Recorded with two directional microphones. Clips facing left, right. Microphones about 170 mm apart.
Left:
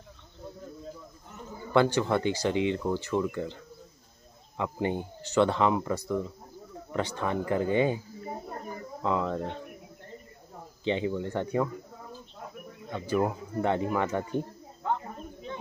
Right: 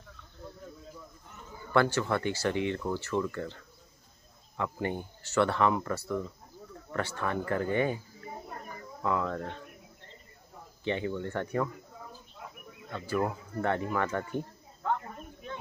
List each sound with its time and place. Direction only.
1.7 s speech: 20° left (ahead or behind)
9.0 s speech: 20° left (ahead or behind)
10.8 s speech: 20° left (ahead or behind)
12.9 s a sound: 20° left (ahead or behind)